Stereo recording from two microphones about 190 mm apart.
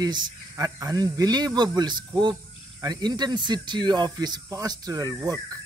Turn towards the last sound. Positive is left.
turn(degrees=-20)  # may be behind; listen again after turning